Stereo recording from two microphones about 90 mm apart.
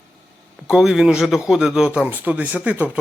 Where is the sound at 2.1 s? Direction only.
20° right (ahead or behind).